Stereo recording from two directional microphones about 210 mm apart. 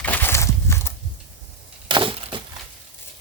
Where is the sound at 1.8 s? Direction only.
25° right (ahead or behind).